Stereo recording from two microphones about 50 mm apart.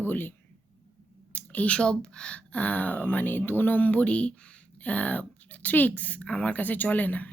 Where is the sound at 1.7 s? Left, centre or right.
Centre.